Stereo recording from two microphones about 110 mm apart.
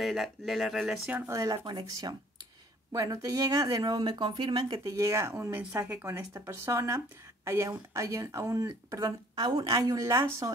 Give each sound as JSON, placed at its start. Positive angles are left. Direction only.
{"t": 0.0, "sound": "speech", "side_deg": 0}
{"t": 1.0, "sound": "speech", "side_deg": -20}
{"t": 1.6, "sound": "speech", "side_deg": -40}
{"t": 4.8, "sound": "speech", "side_deg": -30}